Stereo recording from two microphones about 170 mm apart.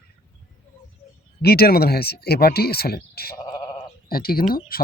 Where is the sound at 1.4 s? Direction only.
65° left (ahead or behind).